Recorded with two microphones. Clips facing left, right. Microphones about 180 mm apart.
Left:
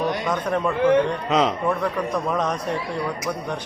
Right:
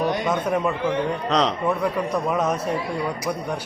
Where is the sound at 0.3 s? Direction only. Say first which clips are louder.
Right 1 dB; 10° right (ahead or behind).